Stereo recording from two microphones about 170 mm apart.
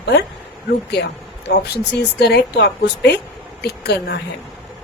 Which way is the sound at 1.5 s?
75° left (ahead or behind).